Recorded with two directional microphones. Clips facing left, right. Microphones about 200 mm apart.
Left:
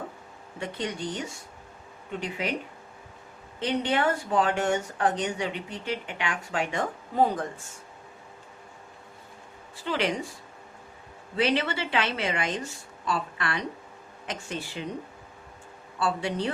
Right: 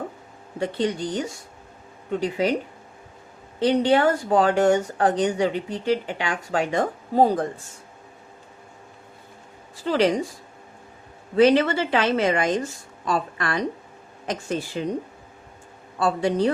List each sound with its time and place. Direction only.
0.6 s speech: 35° right (ahead or behind)
3.6 s speech: 35° right (ahead or behind)
9.8 s speech: 40° right (ahead or behind)
11.3 s a woman's voice: 45° right (ahead or behind)
16.0 s speech: 40° right (ahead or behind)